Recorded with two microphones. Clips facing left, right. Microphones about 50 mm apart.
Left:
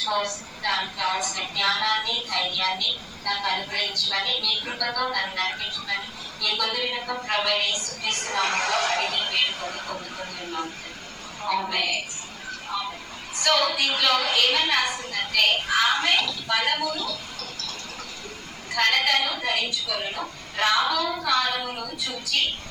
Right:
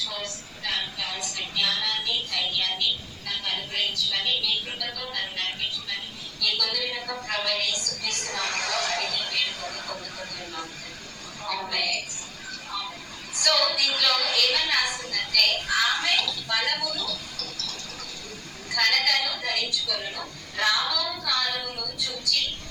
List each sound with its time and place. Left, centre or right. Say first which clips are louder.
0.0 s a woman's voice: left 8 dB; left
6.4 s a woman's voice: left 2 dB; left
7.1 s a woman's voice: left 4 dB; centre
7.3 s a woman's voice: left 4 dB; left
13.3 s a woman's voice: left 2 dB; left